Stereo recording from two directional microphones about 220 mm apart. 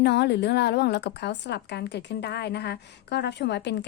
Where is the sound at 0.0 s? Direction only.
50° left (ahead or behind).